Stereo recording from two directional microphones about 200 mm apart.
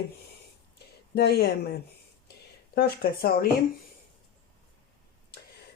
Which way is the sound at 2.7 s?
50° left (ahead or behind).